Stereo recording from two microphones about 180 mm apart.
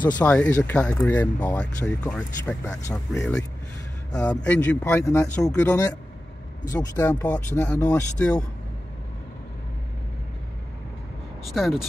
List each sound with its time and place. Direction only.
0.2 s speech: 5° left (ahead or behind)
11.4 s speech: centre (ahead or behind)